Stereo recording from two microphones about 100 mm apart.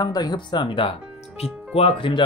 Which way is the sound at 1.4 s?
90° left.